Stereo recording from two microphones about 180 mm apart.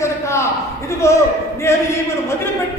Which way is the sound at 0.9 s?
15° left (ahead or behind).